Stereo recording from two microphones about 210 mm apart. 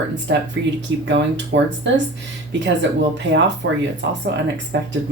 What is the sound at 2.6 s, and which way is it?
Speech, 60° right (ahead or behind).